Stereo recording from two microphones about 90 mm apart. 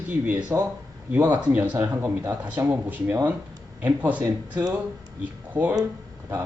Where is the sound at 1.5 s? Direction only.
25° right (ahead or behind).